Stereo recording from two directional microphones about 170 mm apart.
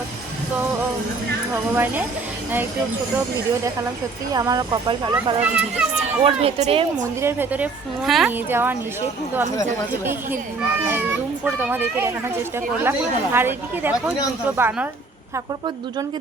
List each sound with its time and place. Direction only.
1.7 s speech: 10° right (ahead or behind)
4.3 s speech: 20° right (ahead or behind)
5.4 s speech: 5° right (ahead or behind)
6.2 s speech: 35° right (ahead or behind)
7.2 s speech: 15° right (ahead or behind)
8.4 s speech: 10° right (ahead or behind)
11.4 s speech: 10° right (ahead or behind)